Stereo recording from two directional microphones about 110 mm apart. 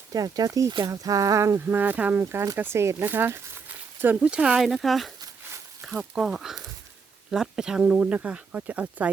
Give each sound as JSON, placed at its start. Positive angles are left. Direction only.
{"t": 0.1, "sound": "speech", "side_deg": -35}